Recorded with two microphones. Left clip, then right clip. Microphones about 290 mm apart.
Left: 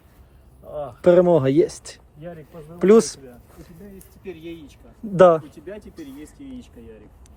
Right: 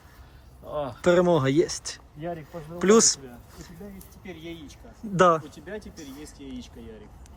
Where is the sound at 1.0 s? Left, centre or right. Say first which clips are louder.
Left 6 dB; centre.